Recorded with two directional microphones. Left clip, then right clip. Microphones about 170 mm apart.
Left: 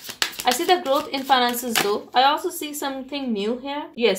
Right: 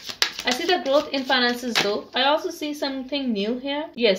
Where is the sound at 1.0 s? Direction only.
40° left (ahead or behind).